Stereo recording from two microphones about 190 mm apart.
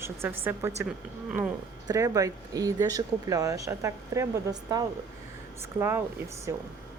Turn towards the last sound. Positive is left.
turn(degrees=-15)  # may be behind; listen again after turning